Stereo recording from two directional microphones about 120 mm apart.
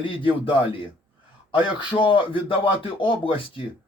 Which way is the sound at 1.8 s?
45° left (ahead or behind).